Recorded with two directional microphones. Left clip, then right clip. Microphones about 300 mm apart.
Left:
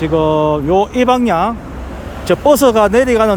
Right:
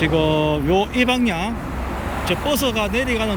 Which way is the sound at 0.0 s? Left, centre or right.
Centre.